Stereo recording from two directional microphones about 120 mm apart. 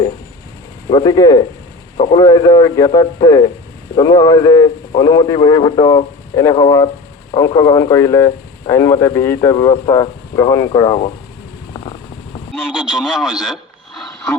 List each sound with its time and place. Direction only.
0.9 s speech: 40° left (ahead or behind)
12.7 s speech: centre (ahead or behind)